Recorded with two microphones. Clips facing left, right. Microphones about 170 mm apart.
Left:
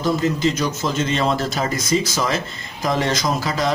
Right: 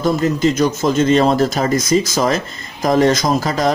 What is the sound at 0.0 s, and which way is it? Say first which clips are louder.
Speech: right 4 dB; 45° right (ahead or behind).